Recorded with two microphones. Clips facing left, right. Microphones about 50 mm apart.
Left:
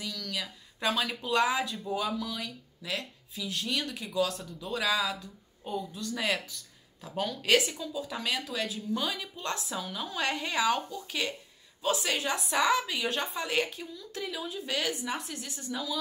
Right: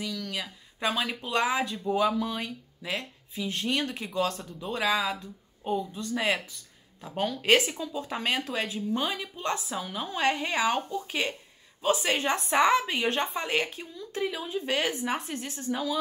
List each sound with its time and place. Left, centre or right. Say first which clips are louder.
0.2 s speech: right 2 dB; right
2.2 s speech: right 4 dB; right
4.3 s a woman's voice: right 2 dB; centre
4.6 s speech: right 2 dB; right
7.6 s speech: right 3 dB; centre
7.9 s speech: right 4 dB; right
9.2 s speech: right 4 dB; centre
9.6 s a woman's voice: right 2 dB; centre
9.9 s speech: right 6 dB; centre
13.4 s speech: right 1 dB; centre
15.5 s a woman's voice: right 5 dB; centre